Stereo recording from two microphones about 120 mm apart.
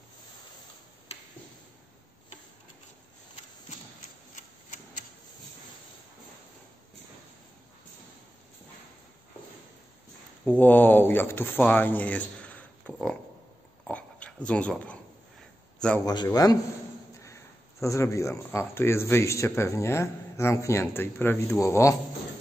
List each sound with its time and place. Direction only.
10.4 s speech: 15° left (ahead or behind)
13.8 s a sound: 10° left (ahead or behind)
15.8 s a man's voice: 5° left (ahead or behind)
16.3 s speech: 30° left (ahead or behind)